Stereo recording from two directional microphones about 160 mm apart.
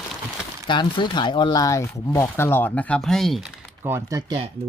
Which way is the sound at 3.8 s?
15° right (ahead or behind).